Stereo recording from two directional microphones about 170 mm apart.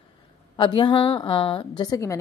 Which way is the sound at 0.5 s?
25° left (ahead or behind).